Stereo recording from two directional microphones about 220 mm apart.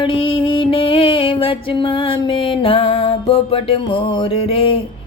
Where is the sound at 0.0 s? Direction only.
25° left (ahead or behind).